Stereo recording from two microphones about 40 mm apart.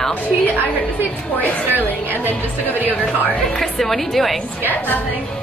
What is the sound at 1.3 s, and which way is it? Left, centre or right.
Speech, left.